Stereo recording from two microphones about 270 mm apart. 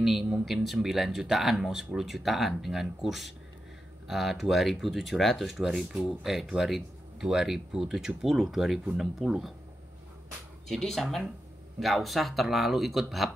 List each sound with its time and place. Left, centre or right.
0.0 s speech: centre
10.7 s speech: centre